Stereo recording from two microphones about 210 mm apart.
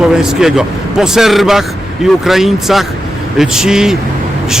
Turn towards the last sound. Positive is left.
turn(degrees=-5)  # may be behind; listen again after turning